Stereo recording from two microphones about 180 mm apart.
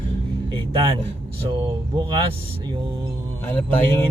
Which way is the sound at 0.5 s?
25° right (ahead or behind).